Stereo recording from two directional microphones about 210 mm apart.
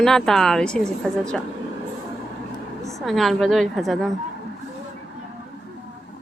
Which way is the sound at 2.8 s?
Centre (ahead or behind).